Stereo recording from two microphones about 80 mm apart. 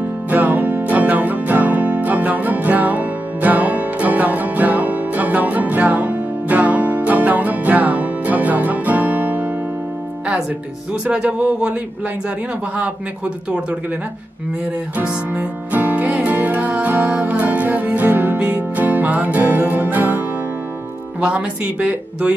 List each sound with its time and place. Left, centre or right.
0.3 s music: centre
11.1 s speech: centre
15.0 s music: centre
21.2 s speech: centre